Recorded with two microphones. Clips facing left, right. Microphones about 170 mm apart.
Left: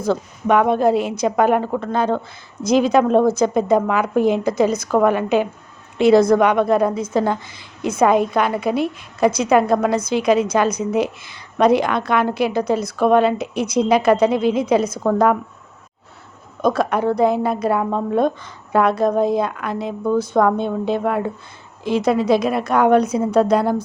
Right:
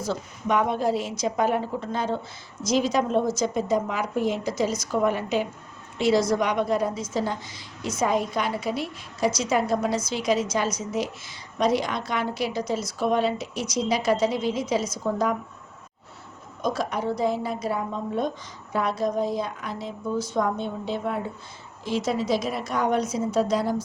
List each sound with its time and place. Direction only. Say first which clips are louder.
0.0 s a woman's voice: left 8 dB; 60° left (ahead or behind)
16.6 s a woman's voice: left 8 dB; 60° left (ahead or behind)